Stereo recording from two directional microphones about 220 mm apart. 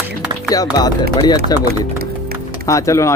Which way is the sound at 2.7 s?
15° left (ahead or behind).